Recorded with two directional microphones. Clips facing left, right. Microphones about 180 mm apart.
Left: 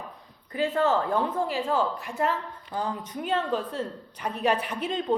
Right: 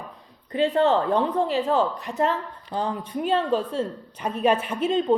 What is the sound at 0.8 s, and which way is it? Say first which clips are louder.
Speech: right 3 dB; 20° right (ahead or behind).